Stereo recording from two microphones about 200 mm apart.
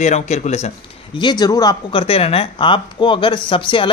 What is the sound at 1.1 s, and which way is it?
Speech, 20° left (ahead or behind).